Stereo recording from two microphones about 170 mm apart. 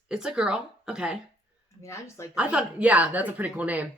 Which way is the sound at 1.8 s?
15° left (ahead or behind).